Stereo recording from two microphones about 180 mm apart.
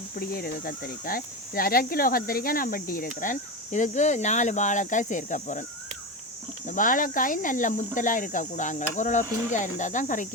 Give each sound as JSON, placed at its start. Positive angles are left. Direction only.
{"t": 0.2, "sound": "speech", "side_deg": 55}
{"t": 6.7, "sound": "speech", "side_deg": 50}